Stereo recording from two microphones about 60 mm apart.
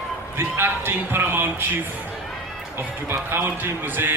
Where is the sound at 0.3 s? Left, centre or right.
Right.